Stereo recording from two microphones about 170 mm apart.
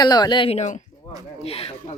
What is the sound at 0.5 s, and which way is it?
Speech, 45° left (ahead or behind).